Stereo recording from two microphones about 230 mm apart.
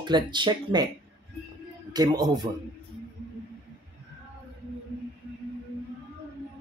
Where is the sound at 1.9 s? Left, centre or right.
Centre.